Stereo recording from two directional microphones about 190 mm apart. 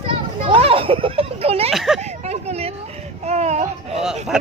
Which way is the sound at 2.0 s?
35° right (ahead or behind).